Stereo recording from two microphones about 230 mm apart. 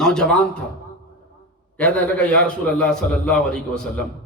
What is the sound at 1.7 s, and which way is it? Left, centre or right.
A man's voice, centre.